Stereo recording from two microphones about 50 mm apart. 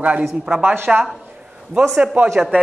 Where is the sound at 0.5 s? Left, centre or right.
Right.